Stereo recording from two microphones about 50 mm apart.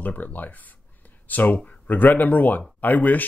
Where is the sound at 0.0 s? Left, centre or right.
Left.